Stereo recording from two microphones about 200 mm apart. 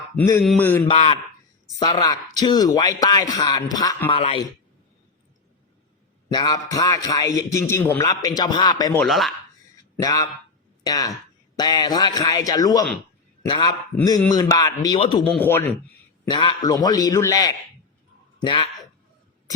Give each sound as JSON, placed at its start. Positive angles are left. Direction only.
{"t": 0.2, "sound": "a man's voice", "side_deg": 15}
{"t": 0.9, "sound": "a man's voice", "side_deg": 30}
{"t": 1.8, "sound": "a man's voice", "side_deg": 20}
{"t": 6.3, "sound": "a man's voice", "side_deg": 20}
{"t": 9.0, "sound": "speech", "side_deg": 0}
{"t": 10.0, "sound": "a man's voice", "side_deg": 15}
{"t": 15.3, "sound": "a man's voice", "side_deg": 10}
{"t": 16.2, "sound": "a man's voice", "side_deg": 25}